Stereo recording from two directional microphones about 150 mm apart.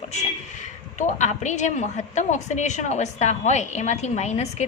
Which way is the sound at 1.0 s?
55° left (ahead or behind).